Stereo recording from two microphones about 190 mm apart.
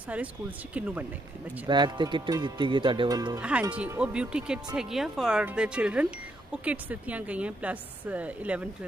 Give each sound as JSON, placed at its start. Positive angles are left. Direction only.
{"t": 0.7, "sound": "speech", "side_deg": -5}
{"t": 1.7, "sound": "speech", "side_deg": -25}
{"t": 3.7, "sound": "speech", "side_deg": -5}